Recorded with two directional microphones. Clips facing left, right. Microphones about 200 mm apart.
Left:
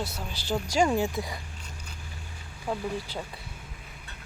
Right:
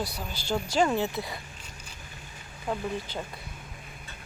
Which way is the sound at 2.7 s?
5° left (ahead or behind).